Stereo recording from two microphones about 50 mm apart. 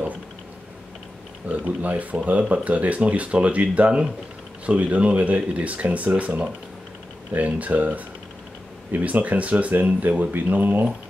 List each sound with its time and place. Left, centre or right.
1.5 s speech: right